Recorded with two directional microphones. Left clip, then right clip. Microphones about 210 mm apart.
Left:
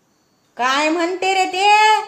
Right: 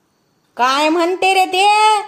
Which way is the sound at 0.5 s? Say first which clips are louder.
Right 3 dB; 35° right (ahead or behind).